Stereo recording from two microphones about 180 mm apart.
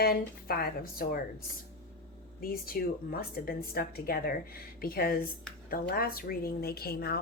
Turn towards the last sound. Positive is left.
turn(degrees=60)  # may be behind; listen again after turning